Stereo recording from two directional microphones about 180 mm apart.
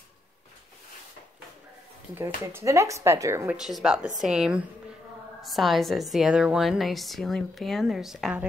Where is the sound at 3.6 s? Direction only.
5° right (ahead or behind).